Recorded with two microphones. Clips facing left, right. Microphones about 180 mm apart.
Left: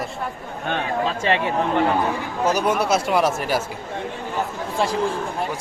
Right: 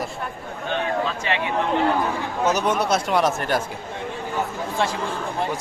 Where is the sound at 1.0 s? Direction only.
35° left (ahead or behind).